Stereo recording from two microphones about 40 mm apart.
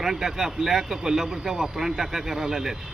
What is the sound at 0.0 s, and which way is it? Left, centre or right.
Speech, centre.